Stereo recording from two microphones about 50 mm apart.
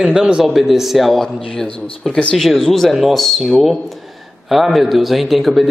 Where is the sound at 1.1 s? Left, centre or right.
Centre.